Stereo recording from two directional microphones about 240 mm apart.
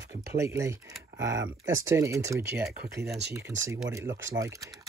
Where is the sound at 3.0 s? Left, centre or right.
Right.